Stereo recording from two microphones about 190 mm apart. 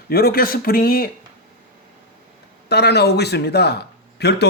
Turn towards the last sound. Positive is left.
turn(degrees=60)  # may be behind; listen again after turning